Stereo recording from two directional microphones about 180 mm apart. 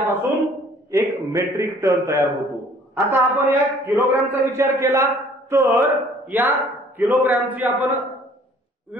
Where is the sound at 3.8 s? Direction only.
10° right (ahead or behind).